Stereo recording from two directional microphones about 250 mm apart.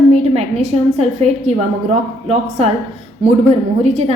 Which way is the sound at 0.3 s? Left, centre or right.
Right.